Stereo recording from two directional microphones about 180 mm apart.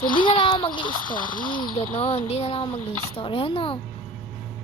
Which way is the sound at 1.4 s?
25° left (ahead or behind).